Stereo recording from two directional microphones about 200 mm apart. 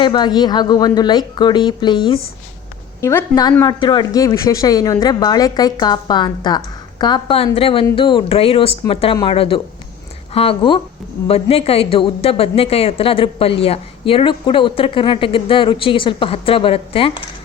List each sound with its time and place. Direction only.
0.0 s a woman's voice: 20° left (ahead or behind)